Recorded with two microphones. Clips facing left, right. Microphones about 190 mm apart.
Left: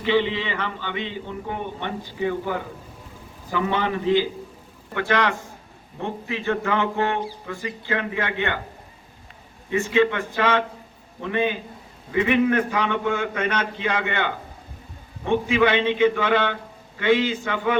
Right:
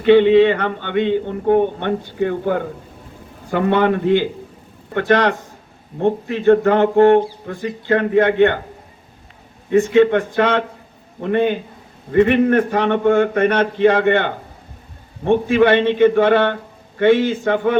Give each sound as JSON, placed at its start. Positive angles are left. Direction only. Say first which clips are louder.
{"t": 0.0, "sound": "a man's voice", "louder": "right 12 dB", "side_deg": -55}
{"t": 9.6, "sound": "a man's voice", "louder": "right 8 dB", "side_deg": -55}